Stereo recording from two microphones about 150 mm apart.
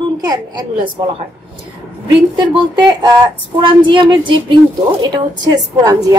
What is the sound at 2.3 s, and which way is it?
A woman's voice, 30° right (ahead or behind).